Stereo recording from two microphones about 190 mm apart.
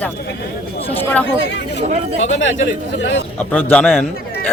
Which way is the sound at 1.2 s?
65° left (ahead or behind).